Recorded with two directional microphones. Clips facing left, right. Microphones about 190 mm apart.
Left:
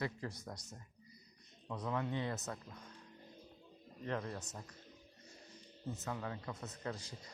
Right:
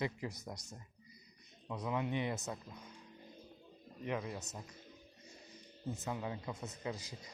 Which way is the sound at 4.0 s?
10° right (ahead or behind).